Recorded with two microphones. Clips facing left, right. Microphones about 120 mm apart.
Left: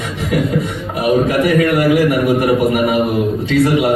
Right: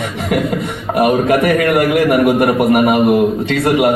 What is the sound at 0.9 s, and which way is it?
A man's voice, 60° right (ahead or behind).